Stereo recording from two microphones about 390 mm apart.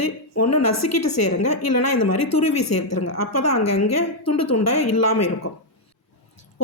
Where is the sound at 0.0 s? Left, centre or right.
Left.